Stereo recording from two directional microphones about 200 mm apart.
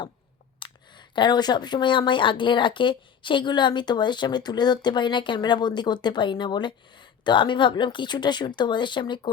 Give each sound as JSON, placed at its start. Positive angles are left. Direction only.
{"t": 0.6, "sound": "speech", "side_deg": 25}